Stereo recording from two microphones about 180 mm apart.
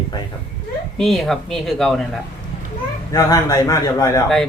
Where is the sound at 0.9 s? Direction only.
Centre (ahead or behind).